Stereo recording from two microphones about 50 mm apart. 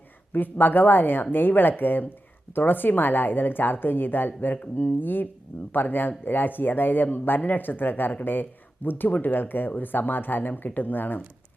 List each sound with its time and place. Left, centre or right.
0.3 s speech: left